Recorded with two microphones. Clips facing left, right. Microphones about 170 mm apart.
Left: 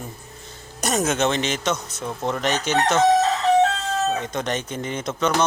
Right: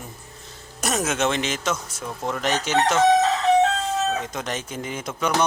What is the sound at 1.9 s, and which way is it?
Speech, 25° left (ahead or behind).